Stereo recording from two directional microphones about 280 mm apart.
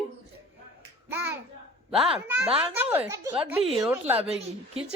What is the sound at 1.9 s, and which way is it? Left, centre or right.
A woman's voice, centre.